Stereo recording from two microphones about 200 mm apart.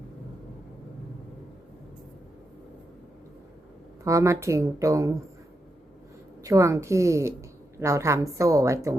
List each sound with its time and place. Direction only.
4.0 s a woman's voice: 15° right (ahead or behind)
6.4 s a woman's voice: 15° right (ahead or behind)